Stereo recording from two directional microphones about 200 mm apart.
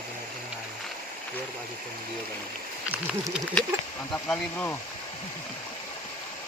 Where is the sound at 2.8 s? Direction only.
10° right (ahead or behind).